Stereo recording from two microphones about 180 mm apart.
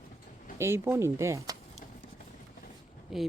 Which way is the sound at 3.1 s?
Centre (ahead or behind).